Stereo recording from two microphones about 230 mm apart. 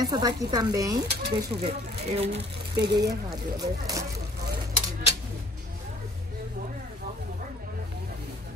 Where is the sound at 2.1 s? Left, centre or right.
Right.